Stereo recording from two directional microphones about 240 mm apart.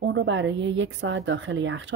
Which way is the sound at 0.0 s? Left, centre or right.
Right.